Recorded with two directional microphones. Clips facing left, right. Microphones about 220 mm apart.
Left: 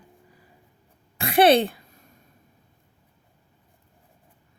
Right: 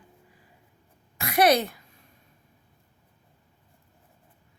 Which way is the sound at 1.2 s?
30° left (ahead or behind).